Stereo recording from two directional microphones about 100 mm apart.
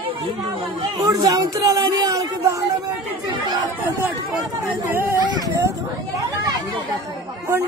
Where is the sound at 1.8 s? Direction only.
45° right (ahead or behind).